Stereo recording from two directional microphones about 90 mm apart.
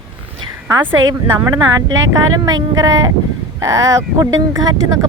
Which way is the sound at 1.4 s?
30° right (ahead or behind).